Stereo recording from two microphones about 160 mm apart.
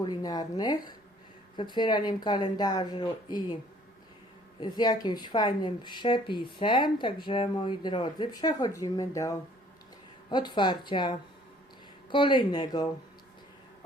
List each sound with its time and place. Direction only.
0.0 s speech: 25° left (ahead or behind)
4.6 s speech: 25° left (ahead or behind)